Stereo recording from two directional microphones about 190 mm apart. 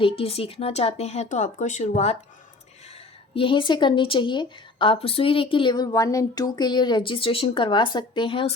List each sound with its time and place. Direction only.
0.0 s speech: 30° left (ahead or behind)
3.3 s a woman's voice: 25° left (ahead or behind)